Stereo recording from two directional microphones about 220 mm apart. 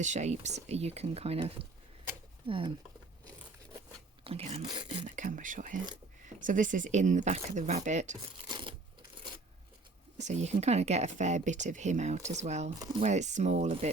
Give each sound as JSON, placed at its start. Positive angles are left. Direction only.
{"t": 0.0, "sound": "speech", "side_deg": -30}
{"t": 4.2, "sound": "speech", "side_deg": -25}
{"t": 5.0, "sound": "speech", "side_deg": -35}
{"t": 8.4, "sound": "a sound", "side_deg": -20}
{"t": 10.2, "sound": "speech", "side_deg": -30}